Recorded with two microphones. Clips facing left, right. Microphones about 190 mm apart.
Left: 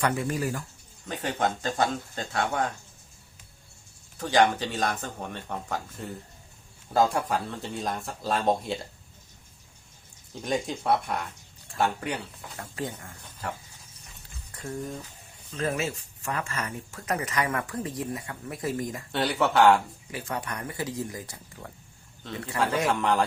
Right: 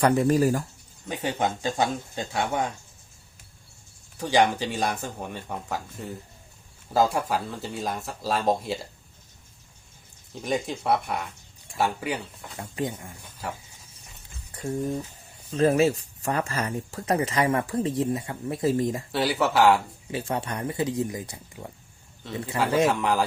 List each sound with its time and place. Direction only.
0.0 s speech: 35° right (ahead or behind)
1.0 s speech: 15° right (ahead or behind)
4.2 s speech: 10° right (ahead or behind)
10.4 s speech: 5° right (ahead or behind)
12.5 s speech: 20° right (ahead or behind)
14.5 s boiling: 20° right (ahead or behind)
15.5 s speech: 35° right (ahead or behind)
19.1 s speech: centre (ahead or behind)
20.1 s speech: 25° right (ahead or behind)
22.9 s speech: centre (ahead or behind)